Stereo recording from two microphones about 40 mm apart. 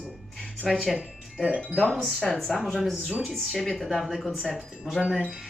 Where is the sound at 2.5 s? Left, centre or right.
Centre.